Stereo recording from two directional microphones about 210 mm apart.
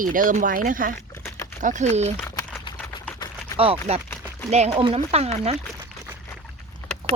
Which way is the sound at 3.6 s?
30° right (ahead or behind).